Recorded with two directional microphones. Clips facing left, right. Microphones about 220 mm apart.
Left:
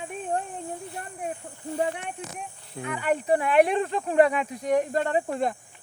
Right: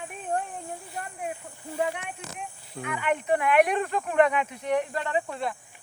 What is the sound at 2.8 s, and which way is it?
Speech, 35° left (ahead or behind).